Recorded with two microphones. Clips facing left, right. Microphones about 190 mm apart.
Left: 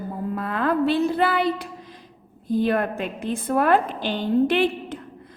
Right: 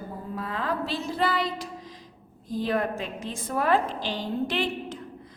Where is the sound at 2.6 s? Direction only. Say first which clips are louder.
Left 3 dB; 60° left (ahead or behind).